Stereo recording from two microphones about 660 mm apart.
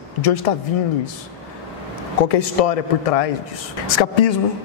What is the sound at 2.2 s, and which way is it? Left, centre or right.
A man's voice, left.